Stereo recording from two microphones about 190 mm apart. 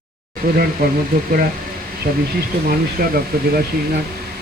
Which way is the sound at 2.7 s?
50° right (ahead or behind).